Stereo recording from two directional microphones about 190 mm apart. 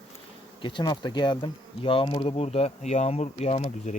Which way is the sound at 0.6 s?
25° left (ahead or behind).